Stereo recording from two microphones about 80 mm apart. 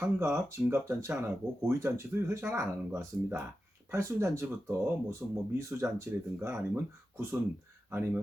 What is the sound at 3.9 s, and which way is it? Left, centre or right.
Speech, right.